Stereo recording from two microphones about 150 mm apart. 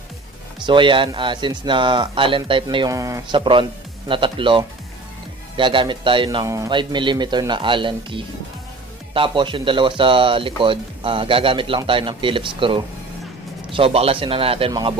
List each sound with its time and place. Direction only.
0.7 s speech: 35° right (ahead or behind)
2.9 s speech: 20° right (ahead or behind)
3.3 s speech: 35° right (ahead or behind)
6.4 s speech: 20° right (ahead or behind)